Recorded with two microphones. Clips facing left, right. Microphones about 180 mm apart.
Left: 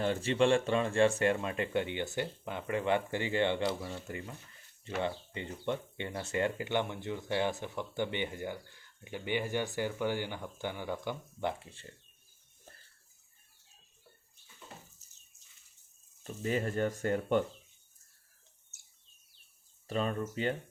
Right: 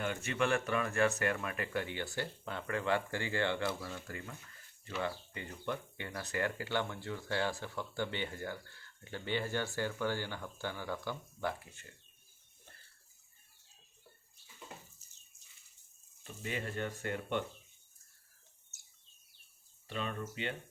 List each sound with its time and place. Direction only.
0.0 s speech: 30° left (ahead or behind)
16.2 s speech: 40° left (ahead or behind)
19.9 s speech: 40° left (ahead or behind)